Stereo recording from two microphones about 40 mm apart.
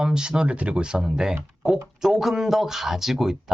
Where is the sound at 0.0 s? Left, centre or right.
Centre.